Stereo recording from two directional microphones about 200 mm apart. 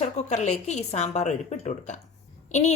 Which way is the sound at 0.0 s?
35° left (ahead or behind).